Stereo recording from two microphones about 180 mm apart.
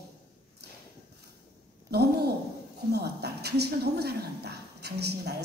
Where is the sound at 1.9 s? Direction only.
60° right (ahead or behind).